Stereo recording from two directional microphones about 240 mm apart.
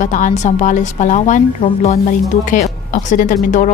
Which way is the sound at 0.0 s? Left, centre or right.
Left.